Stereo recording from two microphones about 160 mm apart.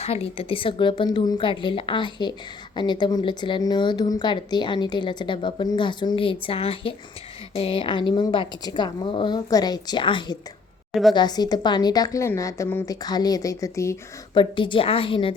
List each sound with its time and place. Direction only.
0.0 s a woman's voice: 40° left (ahead or behind); by 13.9 s 20° left (ahead or behind)
14.3 s a woman's voice: 30° left (ahead or behind)